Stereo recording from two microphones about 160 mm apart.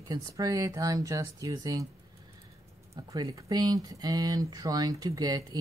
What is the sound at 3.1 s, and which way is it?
Speech, 20° right (ahead or behind).